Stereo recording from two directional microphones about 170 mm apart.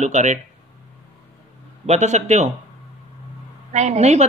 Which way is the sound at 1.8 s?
40° right (ahead or behind).